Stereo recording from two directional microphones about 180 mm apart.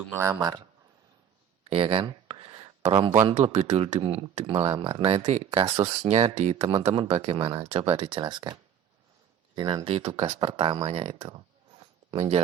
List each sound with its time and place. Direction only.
0.2 s speech: 15° right (ahead or behind)
1.7 s a sound: 30° right (ahead or behind)
3.2 s speech: 35° right (ahead or behind)
9.6 s speech: 25° right (ahead or behind)